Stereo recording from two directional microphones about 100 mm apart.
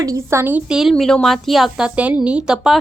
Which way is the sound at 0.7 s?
Centre (ahead or behind).